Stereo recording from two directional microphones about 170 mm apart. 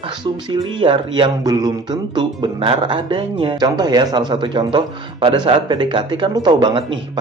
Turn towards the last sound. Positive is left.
turn(degrees=-30)  # may be behind; listen again after turning